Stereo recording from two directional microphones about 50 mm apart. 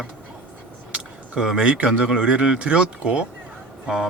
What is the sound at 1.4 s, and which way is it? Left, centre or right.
Speech, centre.